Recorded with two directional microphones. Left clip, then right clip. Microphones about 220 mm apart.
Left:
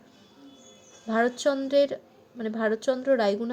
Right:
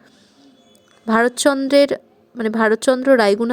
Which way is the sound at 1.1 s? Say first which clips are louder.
Right 9 dB; 45° right (ahead or behind).